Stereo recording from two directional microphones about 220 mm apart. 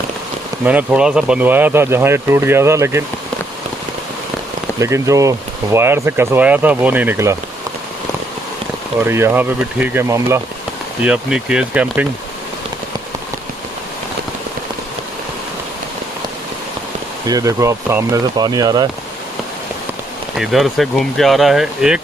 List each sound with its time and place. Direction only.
0.6 s speech: 5° right (ahead or behind)
4.8 s speech: 15° right (ahead or behind)
9.0 s speech: 10° right (ahead or behind)
17.2 s speech: 15° right (ahead or behind)
20.3 s speech: centre (ahead or behind)